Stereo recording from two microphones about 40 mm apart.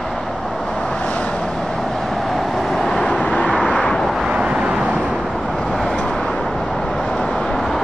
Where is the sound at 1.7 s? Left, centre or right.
Centre.